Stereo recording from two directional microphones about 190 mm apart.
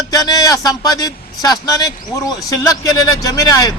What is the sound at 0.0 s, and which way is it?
A man's voice, 20° left (ahead or behind).